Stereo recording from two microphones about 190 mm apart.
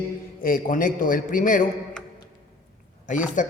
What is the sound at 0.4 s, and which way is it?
Speech, 45° left (ahead or behind).